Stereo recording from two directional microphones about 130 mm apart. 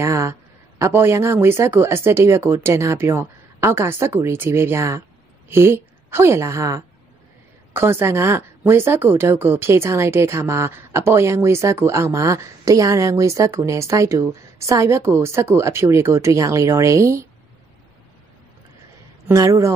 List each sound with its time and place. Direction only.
0.0 s a woman's voice: 20° right (ahead or behind)
19.2 s speech: 25° right (ahead or behind)